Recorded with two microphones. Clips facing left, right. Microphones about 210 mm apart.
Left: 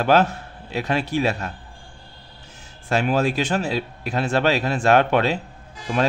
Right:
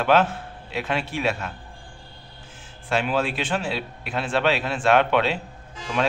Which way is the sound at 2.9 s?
40° left (ahead or behind).